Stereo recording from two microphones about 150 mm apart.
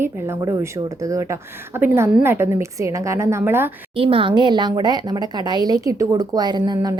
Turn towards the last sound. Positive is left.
turn(degrees=-25)  # may be behind; listen again after turning